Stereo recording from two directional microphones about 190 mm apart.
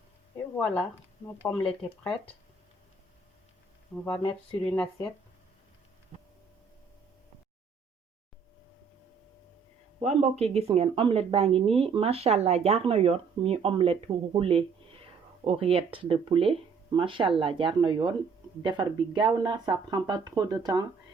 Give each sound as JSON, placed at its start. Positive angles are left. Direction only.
{"t": 0.5, "sound": "speech", "side_deg": 5}
{"t": 4.0, "sound": "speech", "side_deg": 10}
{"t": 10.0, "sound": "a woman's voice", "side_deg": -35}